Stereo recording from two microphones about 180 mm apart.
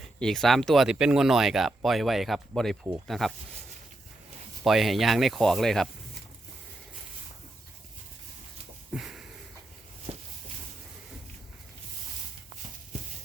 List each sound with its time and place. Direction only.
0.2 s speech: centre (ahead or behind)
4.6 s speech: centre (ahead or behind)
8.9 s a sound: 5° right (ahead or behind)
10.1 s walk: 35° right (ahead or behind)